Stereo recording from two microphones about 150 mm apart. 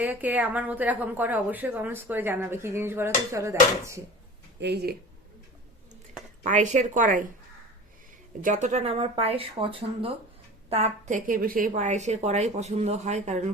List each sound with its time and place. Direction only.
0.0 s a woman's voice: 10° right (ahead or behind)
4.7 s speech: 90° right
6.4 s speech: 55° right (ahead or behind)
8.4 s a woman's voice: 60° right (ahead or behind)